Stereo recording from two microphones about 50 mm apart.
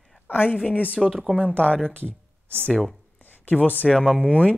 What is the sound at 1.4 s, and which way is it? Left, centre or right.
Speech, left.